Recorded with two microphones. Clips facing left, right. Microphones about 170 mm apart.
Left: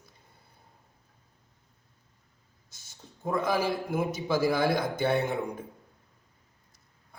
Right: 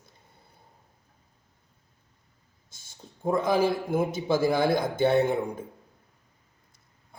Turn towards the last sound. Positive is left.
turn(degrees=-25)  # may be behind; listen again after turning